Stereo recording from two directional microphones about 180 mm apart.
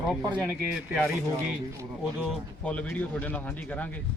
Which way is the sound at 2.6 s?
5° left (ahead or behind).